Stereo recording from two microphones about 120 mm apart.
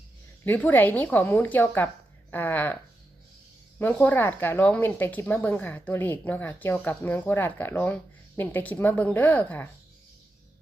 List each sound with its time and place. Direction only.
0.4 s speech: 15° left (ahead or behind)
3.8 s speech: 15° left (ahead or behind)